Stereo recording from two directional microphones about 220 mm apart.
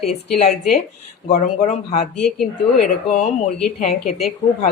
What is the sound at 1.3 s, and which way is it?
Speech, 35° left (ahead or behind).